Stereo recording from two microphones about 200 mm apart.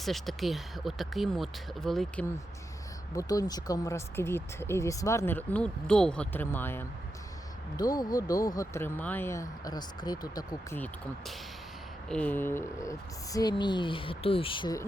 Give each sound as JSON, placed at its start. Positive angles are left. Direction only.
{"t": 0.0, "sound": "speech", "side_deg": 0}
{"t": 3.2, "sound": "speech", "side_deg": 20}
{"t": 12.0, "sound": "speech", "side_deg": 5}